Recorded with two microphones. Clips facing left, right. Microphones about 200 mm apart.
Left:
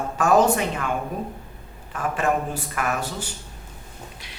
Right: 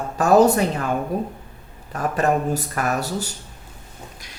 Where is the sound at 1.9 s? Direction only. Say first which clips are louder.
Right 3 dB; 40° right (ahead or behind).